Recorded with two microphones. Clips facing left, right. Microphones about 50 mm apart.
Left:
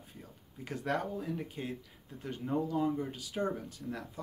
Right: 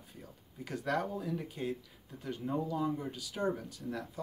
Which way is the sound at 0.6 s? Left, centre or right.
Left.